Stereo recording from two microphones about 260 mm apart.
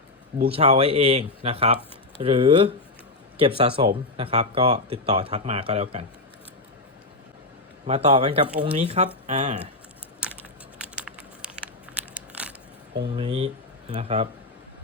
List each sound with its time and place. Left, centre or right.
0.3 s speech: right
7.9 s speech: right
10.9 s a sound: centre
13.1 s speech: right